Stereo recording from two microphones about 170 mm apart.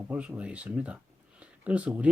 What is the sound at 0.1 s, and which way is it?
Speech, 5° right (ahead or behind).